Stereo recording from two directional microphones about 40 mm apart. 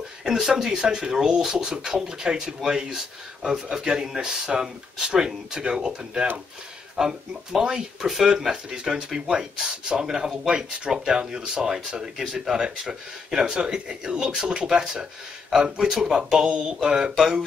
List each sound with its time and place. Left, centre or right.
0.2 s speech: centre
15.9 s speech: centre